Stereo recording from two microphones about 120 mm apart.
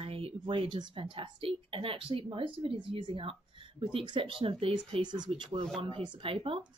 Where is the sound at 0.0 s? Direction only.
50° right (ahead or behind).